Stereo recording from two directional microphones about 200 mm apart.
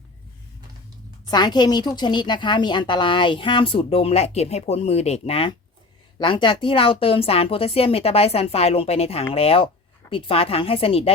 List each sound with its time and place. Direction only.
1.3 s a woman's voice: 20° left (ahead or behind)